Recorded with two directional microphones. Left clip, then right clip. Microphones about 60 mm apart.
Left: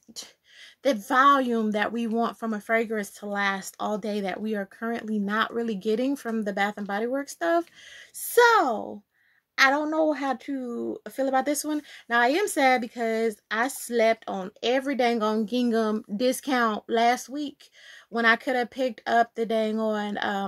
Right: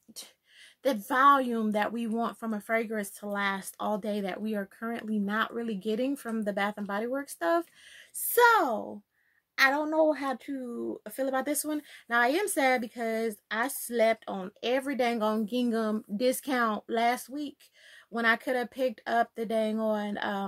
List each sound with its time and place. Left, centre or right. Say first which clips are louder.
0.8 s speech: left 3 dB; left
9.6 s speech: left 3 dB; left